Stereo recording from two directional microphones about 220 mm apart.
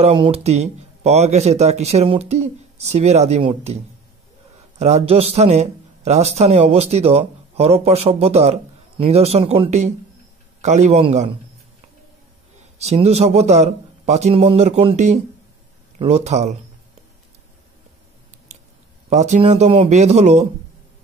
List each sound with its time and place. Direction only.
0.0 s speech: 25° right (ahead or behind)
12.8 s speech: 30° right (ahead or behind)
19.0 s speech: 30° right (ahead or behind)